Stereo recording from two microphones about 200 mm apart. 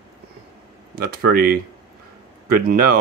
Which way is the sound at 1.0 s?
50° right (ahead or behind).